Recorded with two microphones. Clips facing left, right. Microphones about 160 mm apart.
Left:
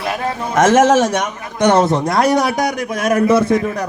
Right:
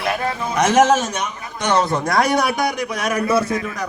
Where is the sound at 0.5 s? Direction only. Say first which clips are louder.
Left 4 dB; 50° left (ahead or behind); by 1.2 s 65° left (ahead or behind).